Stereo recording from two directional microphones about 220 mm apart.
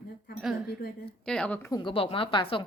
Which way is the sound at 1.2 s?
5° left (ahead or behind).